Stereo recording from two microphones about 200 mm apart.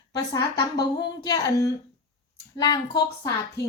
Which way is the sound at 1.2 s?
20° left (ahead or behind).